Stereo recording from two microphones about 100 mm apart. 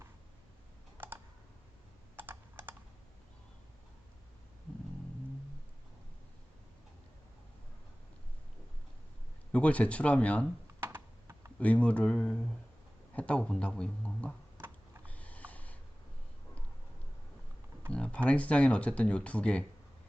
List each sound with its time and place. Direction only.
0.9 s computer keyboard: 20° right (ahead or behind)
9.5 s speech: 15° left (ahead or behind)
10.8 s computer keyboard: 25° right (ahead or behind)
11.6 s speech: 15° left (ahead or behind)
15.0 s sniff: 15° left (ahead or behind)
17.9 s speech: 10° left (ahead or behind)